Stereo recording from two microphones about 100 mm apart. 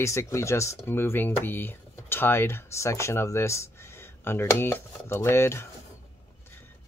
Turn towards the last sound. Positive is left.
turn(degrees=25)  # may be behind; listen again after turning